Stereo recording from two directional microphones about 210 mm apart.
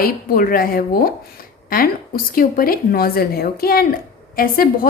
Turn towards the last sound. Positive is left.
turn(degrees=45)  # may be behind; listen again after turning